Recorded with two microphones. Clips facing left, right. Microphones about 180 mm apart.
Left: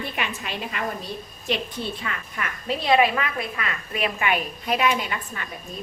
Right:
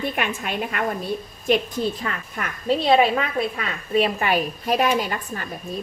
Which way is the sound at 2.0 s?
45° right (ahead or behind).